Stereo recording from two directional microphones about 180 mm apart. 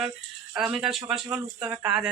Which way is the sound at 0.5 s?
5° right (ahead or behind).